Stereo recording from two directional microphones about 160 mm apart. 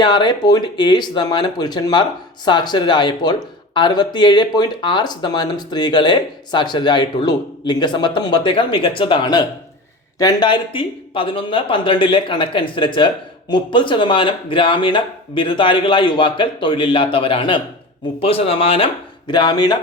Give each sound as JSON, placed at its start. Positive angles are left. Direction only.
{"t": 0.0, "sound": "speech", "side_deg": 30}